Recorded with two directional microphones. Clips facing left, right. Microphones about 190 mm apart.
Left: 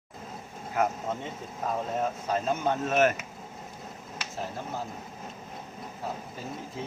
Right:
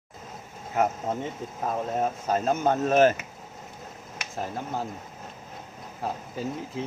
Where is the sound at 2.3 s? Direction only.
45° right (ahead or behind).